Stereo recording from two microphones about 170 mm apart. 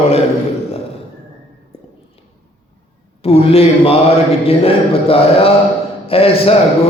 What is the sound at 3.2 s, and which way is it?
Mantra, 35° left (ahead or behind).